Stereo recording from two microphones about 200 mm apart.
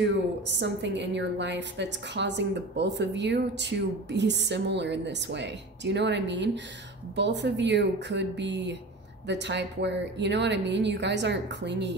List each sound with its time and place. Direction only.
0.0 s a woman's voice: 60° right (ahead or behind)